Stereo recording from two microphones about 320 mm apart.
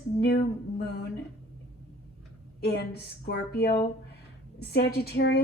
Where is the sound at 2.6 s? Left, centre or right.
Left.